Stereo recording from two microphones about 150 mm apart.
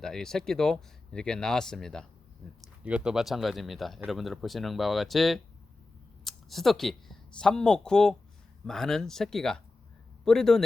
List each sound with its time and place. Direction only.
0.0 s speech: 5° left (ahead or behind)